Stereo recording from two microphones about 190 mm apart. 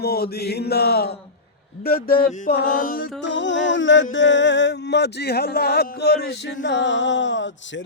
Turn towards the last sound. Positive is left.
turn(degrees=75)  # may be behind; listen again after turning